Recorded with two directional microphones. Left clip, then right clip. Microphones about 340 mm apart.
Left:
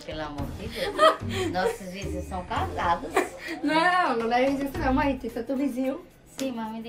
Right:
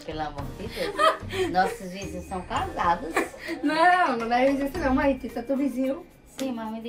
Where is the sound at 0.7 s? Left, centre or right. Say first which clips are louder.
Left 2 dB; centre.